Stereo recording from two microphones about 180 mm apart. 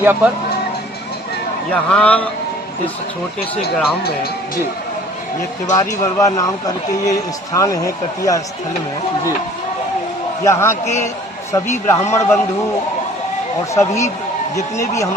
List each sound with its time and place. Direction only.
0.0 s speech: 10° right (ahead or behind)
1.7 s a man's voice: 10° left (ahead or behind)
5.7 s a man's voice: 20° left (ahead or behind)
10.4 s a man's voice: 15° left (ahead or behind)
13.7 s a man's voice: 15° left (ahead or behind)